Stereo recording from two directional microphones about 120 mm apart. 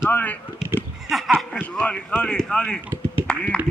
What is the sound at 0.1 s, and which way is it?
Speech, 15° left (ahead or behind).